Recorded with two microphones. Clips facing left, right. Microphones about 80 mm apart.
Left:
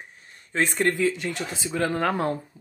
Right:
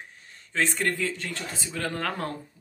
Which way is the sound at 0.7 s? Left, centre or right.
Centre.